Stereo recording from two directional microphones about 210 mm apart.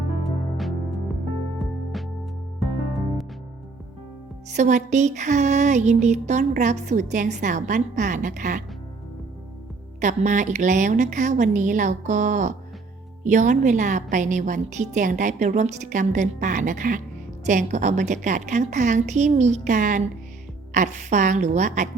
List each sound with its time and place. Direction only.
0.3 s music: centre (ahead or behind)
4.5 s music: 35° right (ahead or behind)
10.0 s music: 35° right (ahead or behind)